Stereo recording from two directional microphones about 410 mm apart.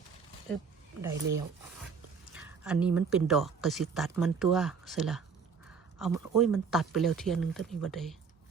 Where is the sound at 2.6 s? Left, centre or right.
Centre.